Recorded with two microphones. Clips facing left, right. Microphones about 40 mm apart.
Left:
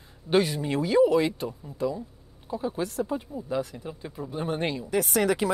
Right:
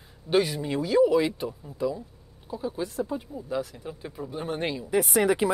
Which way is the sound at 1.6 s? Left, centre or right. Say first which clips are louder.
Even; centre.